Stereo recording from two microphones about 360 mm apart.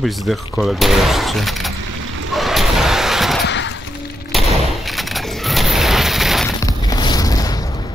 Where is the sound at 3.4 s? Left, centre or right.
Left.